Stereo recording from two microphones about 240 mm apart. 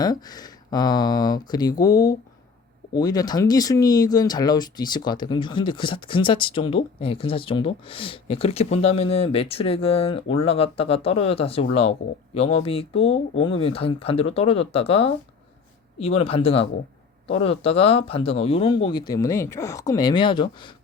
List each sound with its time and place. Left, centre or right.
0.0 s speech: centre